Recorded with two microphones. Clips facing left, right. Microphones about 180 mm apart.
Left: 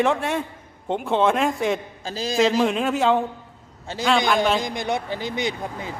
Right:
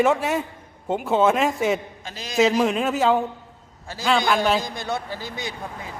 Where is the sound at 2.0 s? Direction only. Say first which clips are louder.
Left 8 dB; 30° left (ahead or behind).